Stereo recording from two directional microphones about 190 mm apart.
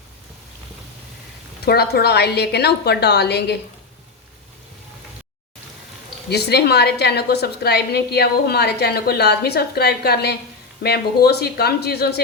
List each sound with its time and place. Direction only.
1.6 s a woman's voice: 55° left (ahead or behind)
6.3 s a woman's voice: 60° left (ahead or behind)